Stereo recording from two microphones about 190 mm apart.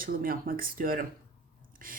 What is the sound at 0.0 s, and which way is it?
Speech, 50° right (ahead or behind).